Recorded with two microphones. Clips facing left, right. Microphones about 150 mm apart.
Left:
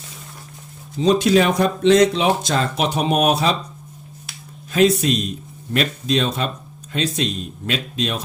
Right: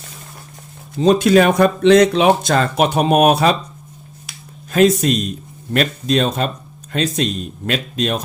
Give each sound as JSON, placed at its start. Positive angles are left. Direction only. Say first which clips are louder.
{"t": 1.0, "sound": "speech", "louder": "right 3 dB", "side_deg": -50}
{"t": 4.7, "sound": "speech", "louder": "right 3 dB", "side_deg": -45}